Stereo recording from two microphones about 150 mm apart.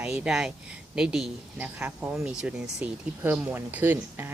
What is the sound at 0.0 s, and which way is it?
Speech, 5° right (ahead or behind).